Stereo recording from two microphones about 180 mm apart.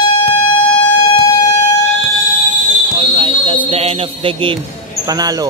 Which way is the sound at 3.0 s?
30° right (ahead or behind).